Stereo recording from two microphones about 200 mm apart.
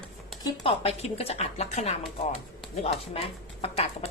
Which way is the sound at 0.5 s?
30° left (ahead or behind).